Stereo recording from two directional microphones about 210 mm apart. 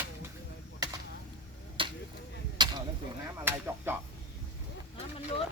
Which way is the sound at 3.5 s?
10° right (ahead or behind).